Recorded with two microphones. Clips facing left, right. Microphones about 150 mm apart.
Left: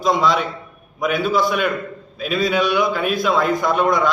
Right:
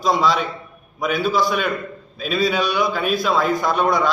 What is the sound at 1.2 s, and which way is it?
Speech, 10° left (ahead or behind).